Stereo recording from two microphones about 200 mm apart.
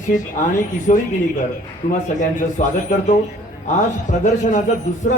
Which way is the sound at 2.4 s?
40° left (ahead or behind).